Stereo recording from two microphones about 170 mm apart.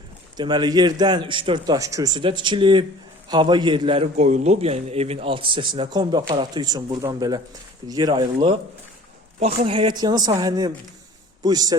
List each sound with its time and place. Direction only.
0.3 s a man's voice: 25° right (ahead or behind)